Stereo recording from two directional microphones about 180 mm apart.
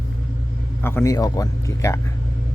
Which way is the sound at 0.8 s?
15° left (ahead or behind).